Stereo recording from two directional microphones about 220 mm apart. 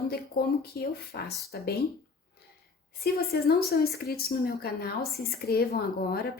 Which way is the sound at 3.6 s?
45° left (ahead or behind).